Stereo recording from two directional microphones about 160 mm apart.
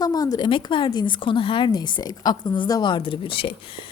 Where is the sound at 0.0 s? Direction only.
25° left (ahead or behind).